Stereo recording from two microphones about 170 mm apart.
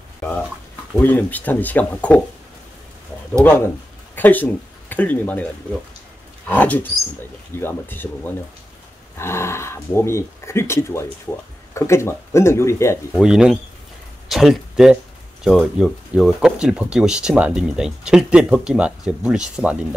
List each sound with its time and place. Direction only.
0.9 s speech: 10° left (ahead or behind)
3.4 s speech: 10° left (ahead or behind)
6.5 s speech: 10° left (ahead or behind)
13.1 s speech: 5° right (ahead or behind)